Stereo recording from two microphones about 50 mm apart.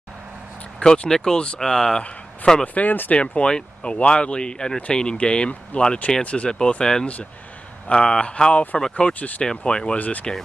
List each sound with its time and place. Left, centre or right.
0.7 s speech: left
2.6 s speech: left
3.2 s speech: left
9.9 s speech: left